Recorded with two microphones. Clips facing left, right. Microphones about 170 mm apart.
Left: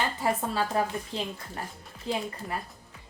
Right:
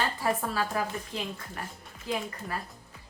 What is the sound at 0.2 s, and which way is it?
A woman's voice, 25° left (ahead or behind).